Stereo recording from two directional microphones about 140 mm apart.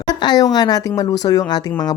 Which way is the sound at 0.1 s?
30° left (ahead or behind).